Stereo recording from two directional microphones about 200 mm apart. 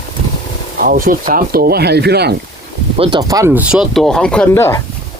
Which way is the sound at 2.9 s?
30° right (ahead or behind).